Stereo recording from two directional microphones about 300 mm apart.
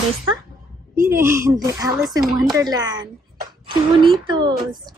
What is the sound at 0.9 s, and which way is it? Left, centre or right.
Speech, centre.